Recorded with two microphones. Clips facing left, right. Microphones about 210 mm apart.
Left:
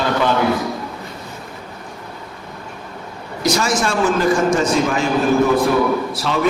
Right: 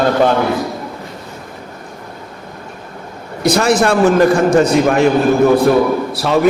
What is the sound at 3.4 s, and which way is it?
A man's voice, 60° right (ahead or behind).